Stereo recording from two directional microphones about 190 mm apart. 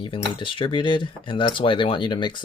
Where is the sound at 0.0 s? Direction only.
25° left (ahead or behind).